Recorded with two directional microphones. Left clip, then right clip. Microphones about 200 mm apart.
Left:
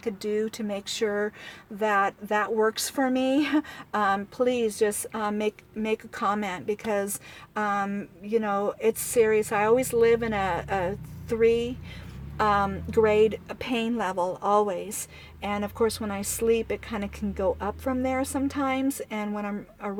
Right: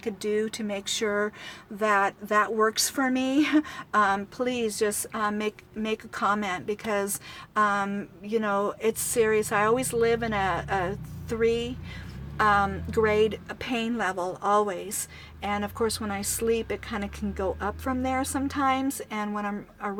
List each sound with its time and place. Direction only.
0.0 s speech: centre (ahead or behind)